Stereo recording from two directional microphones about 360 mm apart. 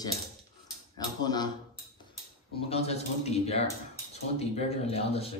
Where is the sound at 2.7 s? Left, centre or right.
Centre.